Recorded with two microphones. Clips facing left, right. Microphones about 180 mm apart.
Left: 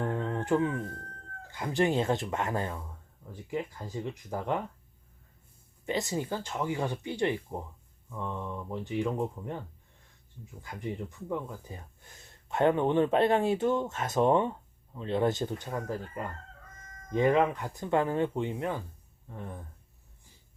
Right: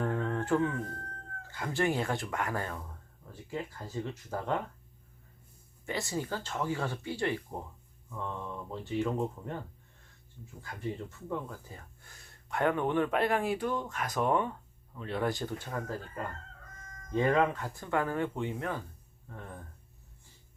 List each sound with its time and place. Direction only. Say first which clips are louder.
0.0 s a sound: even; 20° left (ahead or behind)
1.5 s speech: left 3 dB; 20° left (ahead or behind)
5.8 s speech: left 3 dB; 20° left (ahead or behind)
10.6 s speech: left 1 dB; 15° left (ahead or behind)